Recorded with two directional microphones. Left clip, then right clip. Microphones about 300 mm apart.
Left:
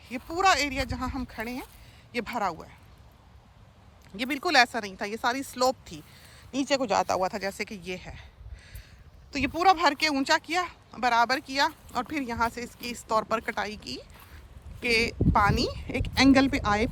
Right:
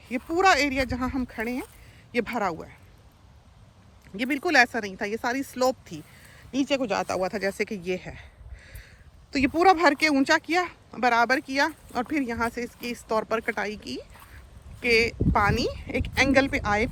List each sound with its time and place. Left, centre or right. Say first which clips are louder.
0.0 s speech: right 3 dB; centre
4.2 s speech: right 2 dB; centre